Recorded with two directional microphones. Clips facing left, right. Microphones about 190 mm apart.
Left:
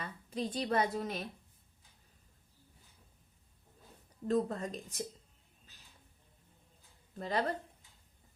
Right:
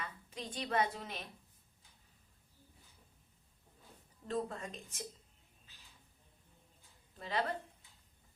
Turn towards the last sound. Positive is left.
turn(degrees=45)  # may be behind; listen again after turning